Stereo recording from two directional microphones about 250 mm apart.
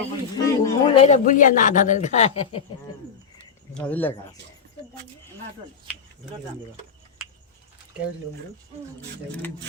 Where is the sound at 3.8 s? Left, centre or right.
Centre.